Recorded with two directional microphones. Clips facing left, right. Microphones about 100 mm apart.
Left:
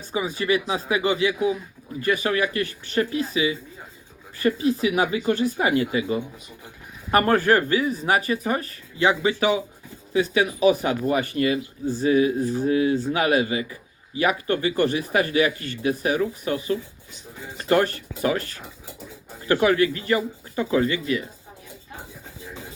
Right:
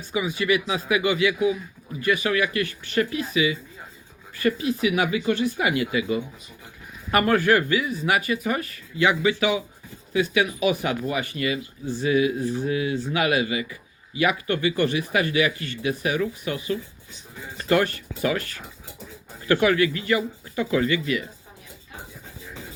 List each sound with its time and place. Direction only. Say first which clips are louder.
0.1 s speech: even; 35° left (ahead or behind)